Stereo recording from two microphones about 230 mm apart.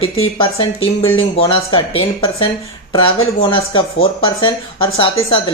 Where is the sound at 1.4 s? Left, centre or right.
Left.